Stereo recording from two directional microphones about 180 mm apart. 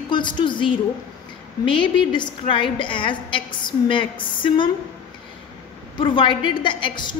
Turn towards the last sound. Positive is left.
turn(degrees=25)  # may be behind; listen again after turning